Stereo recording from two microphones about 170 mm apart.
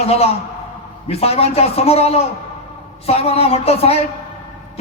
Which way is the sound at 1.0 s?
35° left (ahead or behind).